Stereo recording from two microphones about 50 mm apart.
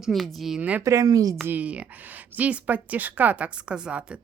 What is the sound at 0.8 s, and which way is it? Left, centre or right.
Speech, right.